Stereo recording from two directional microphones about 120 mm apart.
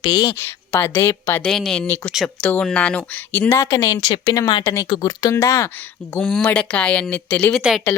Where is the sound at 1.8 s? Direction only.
15° left (ahead or behind).